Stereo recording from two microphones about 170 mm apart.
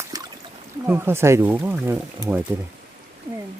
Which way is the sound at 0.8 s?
10° right (ahead or behind).